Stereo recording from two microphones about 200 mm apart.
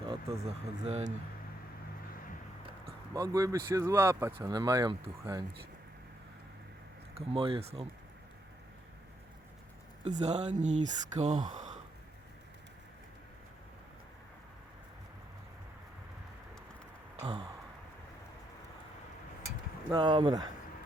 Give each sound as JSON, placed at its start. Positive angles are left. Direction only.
{"t": 0.0, "sound": "a sound", "side_deg": -30}
{"t": 0.9, "sound": "speech", "side_deg": -35}
{"t": 2.6, "sound": "speech", "side_deg": -15}
{"t": 7.2, "sound": "speech", "side_deg": -30}
{"t": 10.0, "sound": "speech", "side_deg": -35}
{"t": 17.2, "sound": "speech", "side_deg": -30}
{"t": 19.9, "sound": "speech", "side_deg": -25}